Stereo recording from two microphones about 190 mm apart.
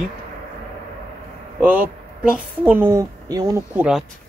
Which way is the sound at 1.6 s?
10° right (ahead or behind).